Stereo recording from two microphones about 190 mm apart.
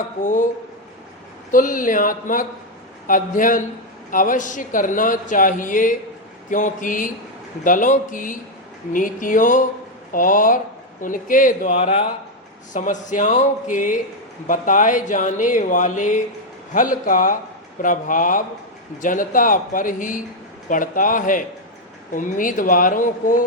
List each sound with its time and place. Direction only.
0.2 s a man's voice: 40° left (ahead or behind)
1.5 s a man's voice: 45° left (ahead or behind)